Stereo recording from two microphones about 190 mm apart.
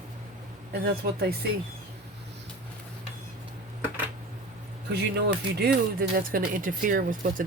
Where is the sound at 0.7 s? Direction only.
55° right (ahead or behind).